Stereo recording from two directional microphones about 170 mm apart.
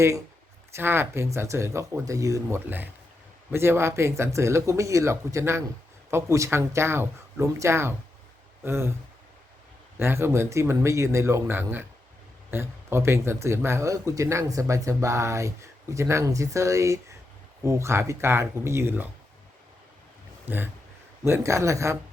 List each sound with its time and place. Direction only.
0.7 s speech: 15° right (ahead or behind)
10.0 s speech: 15° right (ahead or behind)
20.4 s speech: 10° right (ahead or behind)